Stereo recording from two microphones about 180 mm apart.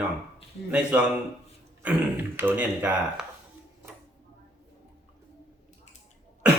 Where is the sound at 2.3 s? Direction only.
10° right (ahead or behind).